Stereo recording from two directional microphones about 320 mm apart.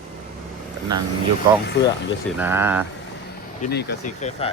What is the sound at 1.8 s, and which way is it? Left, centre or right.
Speech, left.